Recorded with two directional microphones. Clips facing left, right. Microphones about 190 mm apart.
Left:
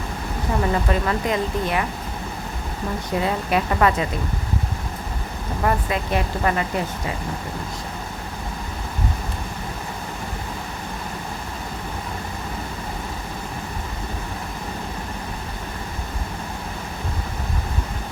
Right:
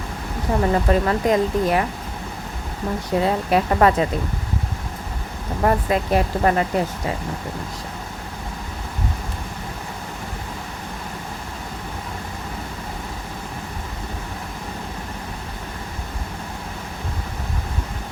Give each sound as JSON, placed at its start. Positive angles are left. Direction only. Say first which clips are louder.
{"t": 0.6, "sound": "speech", "louder": "right 4 dB", "side_deg": -40}
{"t": 3.1, "sound": "speech", "louder": "right 3 dB", "side_deg": -35}
{"t": 5.6, "sound": "speech", "louder": "right 4 dB", "side_deg": -40}